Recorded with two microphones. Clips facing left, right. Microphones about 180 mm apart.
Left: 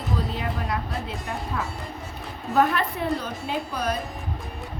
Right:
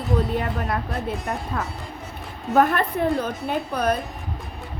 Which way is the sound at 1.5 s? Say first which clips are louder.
Even; 45° right (ahead or behind).